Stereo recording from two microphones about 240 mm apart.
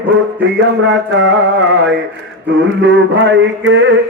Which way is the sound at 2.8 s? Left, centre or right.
Right.